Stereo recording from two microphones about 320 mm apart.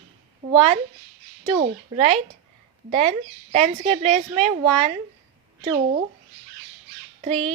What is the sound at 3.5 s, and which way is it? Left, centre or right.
A woman's voice, centre.